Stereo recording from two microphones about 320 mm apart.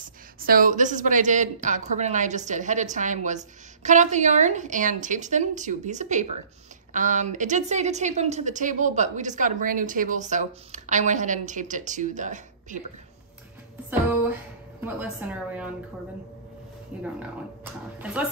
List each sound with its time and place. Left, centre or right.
0.0 s a woman's voice: right
14.8 s a woman's voice: centre
16.9 s a woman's voice: centre